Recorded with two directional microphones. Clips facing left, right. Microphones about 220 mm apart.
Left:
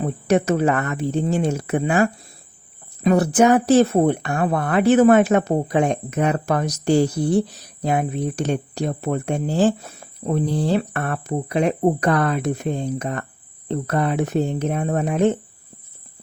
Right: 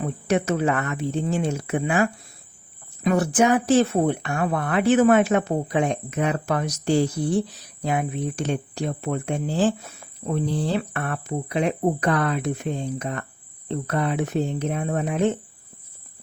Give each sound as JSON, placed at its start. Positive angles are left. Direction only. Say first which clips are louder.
{"t": 0.0, "sound": "speech", "louder": "left 4 dB", "side_deg": 40}